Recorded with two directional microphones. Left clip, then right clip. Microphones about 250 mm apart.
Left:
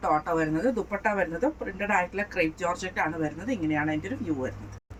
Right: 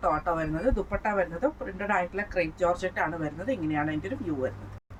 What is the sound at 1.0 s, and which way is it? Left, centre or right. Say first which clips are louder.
A woman's voice: left 1 dB; centre.